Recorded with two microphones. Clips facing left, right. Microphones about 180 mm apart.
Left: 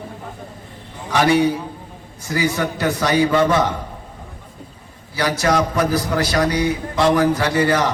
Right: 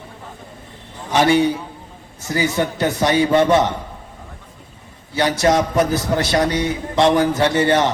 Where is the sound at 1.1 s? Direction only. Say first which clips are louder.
Right 1 dB; 25° right (ahead or behind).